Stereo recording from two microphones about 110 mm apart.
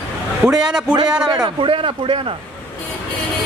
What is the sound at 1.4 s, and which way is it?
Speech, 50° right (ahead or behind).